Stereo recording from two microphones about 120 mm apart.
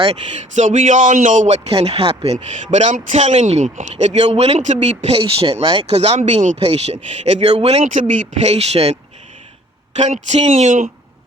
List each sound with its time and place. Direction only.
0.3 s speech: 90° right
1.7 s speech: 55° right (ahead or behind)
2.7 s a man's voice: 80° right; by 5.8 s 45° right (ahead or behind)
5.9 s speech: 60° right (ahead or behind)
9.9 s a man's voice: 70° right (ahead or behind); by 10.8 s 90° right